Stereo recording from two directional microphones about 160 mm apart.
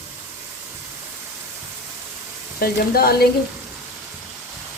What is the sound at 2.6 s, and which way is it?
Speech, 75° left (ahead or behind).